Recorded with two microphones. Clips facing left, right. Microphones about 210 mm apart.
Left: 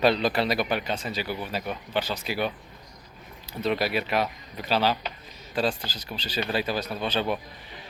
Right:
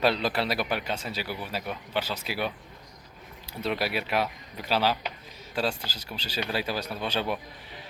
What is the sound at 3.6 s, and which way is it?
Speech, 10° right (ahead or behind).